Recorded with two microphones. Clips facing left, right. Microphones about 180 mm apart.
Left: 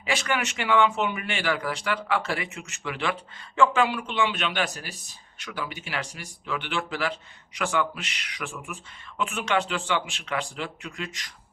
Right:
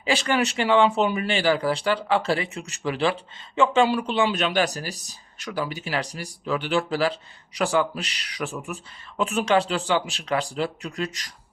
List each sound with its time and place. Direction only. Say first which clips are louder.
0.0 s speech: right 5 dB; 30° right (ahead or behind)
3.5 s speech: right 3 dB; 20° right (ahead or behind); by 11.3 s 40° right (ahead or behind)